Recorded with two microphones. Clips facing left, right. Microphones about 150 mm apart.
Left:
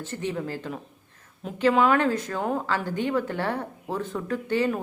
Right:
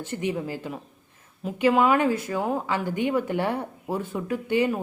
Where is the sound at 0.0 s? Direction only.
15° right (ahead or behind).